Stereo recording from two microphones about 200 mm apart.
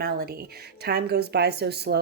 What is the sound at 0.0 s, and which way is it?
Speech, 50° right (ahead or behind).